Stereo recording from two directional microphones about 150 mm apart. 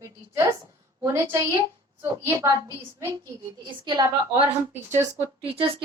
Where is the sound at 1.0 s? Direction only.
15° right (ahead or behind).